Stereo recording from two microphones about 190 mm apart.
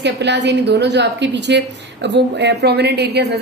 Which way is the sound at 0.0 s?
65° right (ahead or behind).